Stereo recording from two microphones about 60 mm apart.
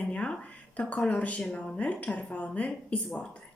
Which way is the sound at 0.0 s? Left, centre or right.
Centre.